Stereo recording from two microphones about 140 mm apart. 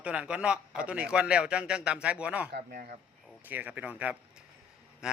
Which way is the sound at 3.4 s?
10° right (ahead or behind).